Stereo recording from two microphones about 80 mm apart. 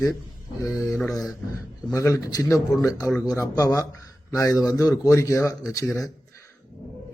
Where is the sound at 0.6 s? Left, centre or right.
Left.